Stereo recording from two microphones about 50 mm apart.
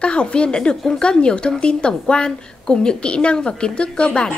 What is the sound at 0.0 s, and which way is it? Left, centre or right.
A woman's voice, centre.